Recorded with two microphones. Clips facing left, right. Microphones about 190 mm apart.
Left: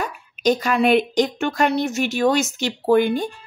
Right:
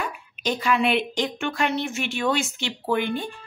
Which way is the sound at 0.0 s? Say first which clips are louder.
Left 8 dB; 40° left (ahead or behind).